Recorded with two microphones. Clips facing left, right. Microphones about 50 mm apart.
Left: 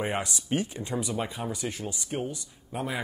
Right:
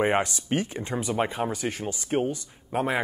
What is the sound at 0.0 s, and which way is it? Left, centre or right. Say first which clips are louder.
Speech: right 7 dB; right.